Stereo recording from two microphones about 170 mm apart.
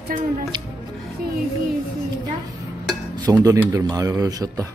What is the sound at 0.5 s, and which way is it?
Music, 25° right (ahead or behind).